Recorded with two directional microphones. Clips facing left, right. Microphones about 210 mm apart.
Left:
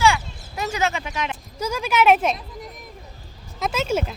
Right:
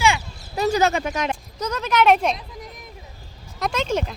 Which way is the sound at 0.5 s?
35° right (ahead or behind).